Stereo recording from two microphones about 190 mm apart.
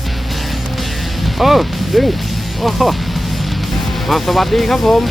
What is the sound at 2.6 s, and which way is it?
Speech, centre (ahead or behind).